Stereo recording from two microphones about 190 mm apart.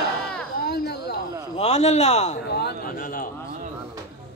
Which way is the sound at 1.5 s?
35° left (ahead or behind).